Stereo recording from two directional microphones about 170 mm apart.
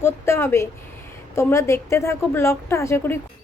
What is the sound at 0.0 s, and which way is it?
A woman's voice, 15° left (ahead or behind).